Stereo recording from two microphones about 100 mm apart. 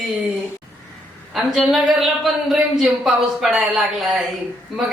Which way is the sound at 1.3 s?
Centre (ahead or behind).